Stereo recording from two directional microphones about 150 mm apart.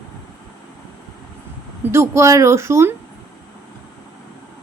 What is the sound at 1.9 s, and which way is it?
A woman's voice, 20° right (ahead or behind).